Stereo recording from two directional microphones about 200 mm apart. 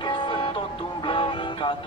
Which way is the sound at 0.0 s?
25° left (ahead or behind).